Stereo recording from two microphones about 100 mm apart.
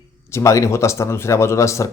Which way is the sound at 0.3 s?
30° left (ahead or behind).